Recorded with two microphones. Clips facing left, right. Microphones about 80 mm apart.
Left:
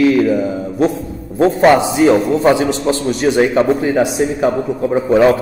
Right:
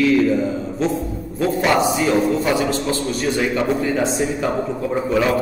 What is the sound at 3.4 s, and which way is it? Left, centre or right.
Speech, left.